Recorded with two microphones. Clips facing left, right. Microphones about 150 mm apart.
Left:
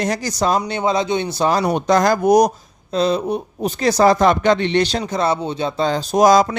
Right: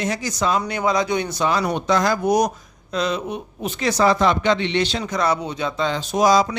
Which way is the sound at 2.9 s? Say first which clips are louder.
Left 5 dB; 35° left (ahead or behind).